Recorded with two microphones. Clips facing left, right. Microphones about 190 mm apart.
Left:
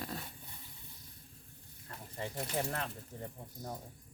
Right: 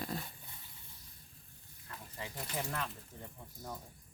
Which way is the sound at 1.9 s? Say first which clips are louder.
Left 4 dB; 40° left (ahead or behind).